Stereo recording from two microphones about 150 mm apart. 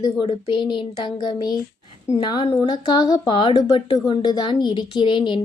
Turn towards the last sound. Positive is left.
turn(degrees=30)  # may be behind; listen again after turning